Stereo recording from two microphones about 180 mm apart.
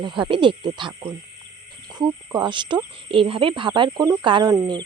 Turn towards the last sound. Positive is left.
turn(degrees=-20)  # may be behind; listen again after turning